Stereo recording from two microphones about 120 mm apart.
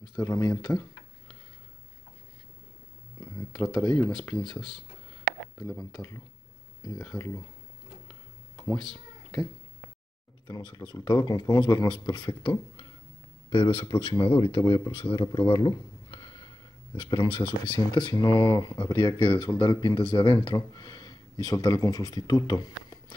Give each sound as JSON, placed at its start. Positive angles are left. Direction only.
{"t": 0.1, "sound": "speech", "side_deg": 25}
{"t": 3.2, "sound": "a sound", "side_deg": 20}
{"t": 3.8, "sound": "speech", "side_deg": 30}
{"t": 4.1, "sound": "speech", "side_deg": 10}
{"t": 5.9, "sound": "speech", "side_deg": 25}
{"t": 7.1, "sound": "speech", "side_deg": 5}
{"t": 10.4, "sound": "speech", "side_deg": 40}